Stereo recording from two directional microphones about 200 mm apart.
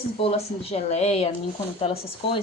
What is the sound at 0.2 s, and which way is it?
Speech, 30° left (ahead or behind).